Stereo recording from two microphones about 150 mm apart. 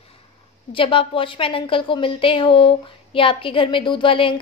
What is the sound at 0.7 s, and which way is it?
A woman's voice, 35° left (ahead or behind).